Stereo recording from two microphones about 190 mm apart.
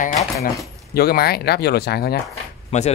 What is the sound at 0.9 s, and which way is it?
Speech, 55° left (ahead or behind).